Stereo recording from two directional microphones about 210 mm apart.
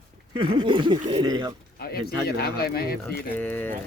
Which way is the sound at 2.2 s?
45° left (ahead or behind).